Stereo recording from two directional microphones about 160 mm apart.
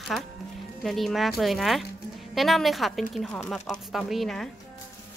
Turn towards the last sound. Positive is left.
turn(degrees=0)  # may be behind; listen again after turning